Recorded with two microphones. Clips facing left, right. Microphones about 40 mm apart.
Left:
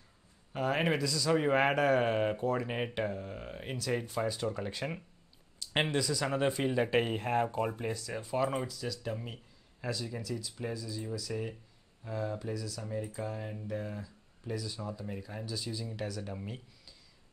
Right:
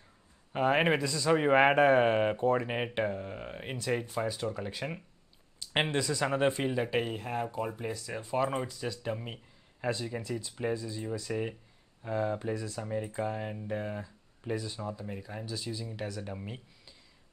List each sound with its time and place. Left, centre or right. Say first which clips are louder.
0.5 s a man's voice: right 4 dB; right; by 5.0 s centre
5.6 s a sound: right 1 dB; centre
5.9 s a man's voice: right 2 dB; right
6.6 s speech: left 1 dB; centre
7.1 s speech: left 4 dB; centre
7.4 s speech: left 1 dB; centre
8.0 s speech: right 2 dB; centre
8.7 s a man's voice: right 2 dB; right
14.9 s speech: right 1 dB; centre